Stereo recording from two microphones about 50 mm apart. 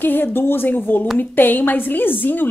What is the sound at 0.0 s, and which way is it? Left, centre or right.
A woman's voice, left.